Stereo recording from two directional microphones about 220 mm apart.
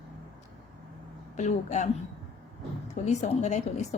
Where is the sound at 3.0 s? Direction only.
30° left (ahead or behind).